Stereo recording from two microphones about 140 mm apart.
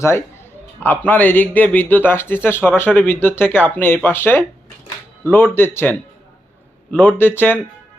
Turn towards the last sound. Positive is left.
turn(degrees=15)  # may be behind; listen again after turning